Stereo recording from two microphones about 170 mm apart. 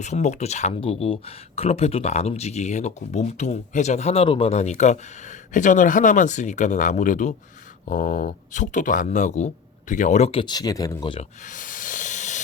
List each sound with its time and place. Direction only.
0.0 s speech: 45° left (ahead or behind)
11.4 s hiss: 50° left (ahead or behind)